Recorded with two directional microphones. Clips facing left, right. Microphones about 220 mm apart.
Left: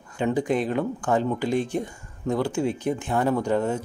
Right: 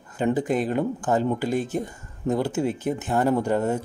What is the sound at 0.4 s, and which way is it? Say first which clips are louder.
Speech: even; 5° right (ahead or behind).